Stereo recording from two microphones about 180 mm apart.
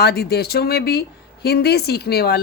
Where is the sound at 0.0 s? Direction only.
60° left (ahead or behind).